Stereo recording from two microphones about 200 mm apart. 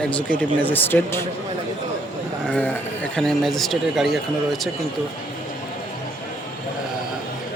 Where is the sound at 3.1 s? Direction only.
Centre (ahead or behind).